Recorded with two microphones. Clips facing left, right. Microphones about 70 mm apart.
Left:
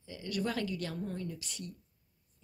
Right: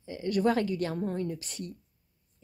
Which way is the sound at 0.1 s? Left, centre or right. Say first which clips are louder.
Right 9 dB; right.